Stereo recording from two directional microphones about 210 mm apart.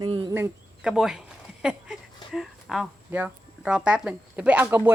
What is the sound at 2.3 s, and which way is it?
Speech, centre (ahead or behind).